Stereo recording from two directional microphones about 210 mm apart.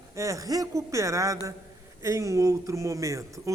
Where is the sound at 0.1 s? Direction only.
15° right (ahead or behind).